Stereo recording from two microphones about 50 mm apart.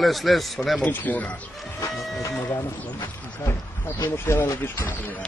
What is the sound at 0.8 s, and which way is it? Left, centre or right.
Speech, left.